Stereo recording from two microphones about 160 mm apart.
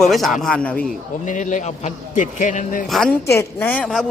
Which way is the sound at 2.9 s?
5° left (ahead or behind).